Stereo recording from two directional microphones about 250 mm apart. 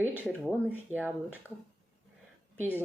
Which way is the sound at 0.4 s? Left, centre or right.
Centre.